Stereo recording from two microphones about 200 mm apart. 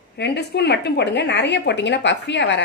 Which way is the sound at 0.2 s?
55° left (ahead or behind).